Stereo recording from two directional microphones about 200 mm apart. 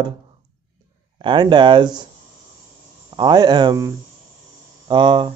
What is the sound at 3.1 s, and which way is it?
Speech, 20° right (ahead or behind).